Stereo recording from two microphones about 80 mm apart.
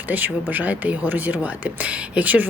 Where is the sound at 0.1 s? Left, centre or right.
Right.